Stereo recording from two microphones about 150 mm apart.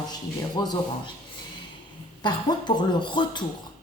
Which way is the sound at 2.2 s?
30° left (ahead or behind).